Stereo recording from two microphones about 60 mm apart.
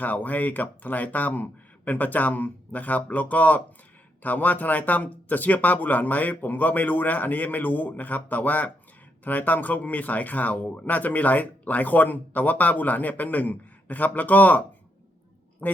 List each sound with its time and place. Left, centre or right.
0.0 s speech: left
15.6 s speech: left